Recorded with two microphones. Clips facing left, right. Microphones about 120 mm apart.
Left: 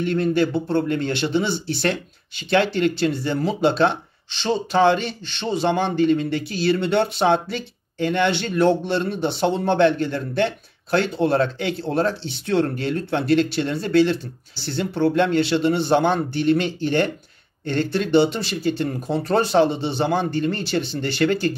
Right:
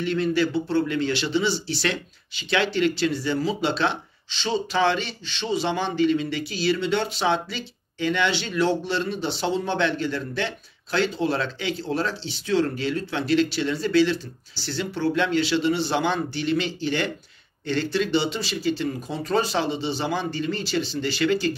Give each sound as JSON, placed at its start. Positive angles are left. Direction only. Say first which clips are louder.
{"t": 0.0, "sound": "a man's voice", "louder": "left 3 dB", "side_deg": 50}